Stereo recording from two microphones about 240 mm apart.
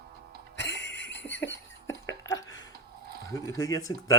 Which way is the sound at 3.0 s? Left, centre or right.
Right.